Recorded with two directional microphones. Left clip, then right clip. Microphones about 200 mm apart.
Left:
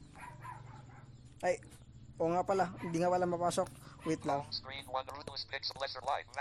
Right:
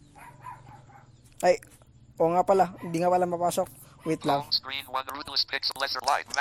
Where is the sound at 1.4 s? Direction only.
30° right (ahead or behind); by 4.2 s 15° right (ahead or behind).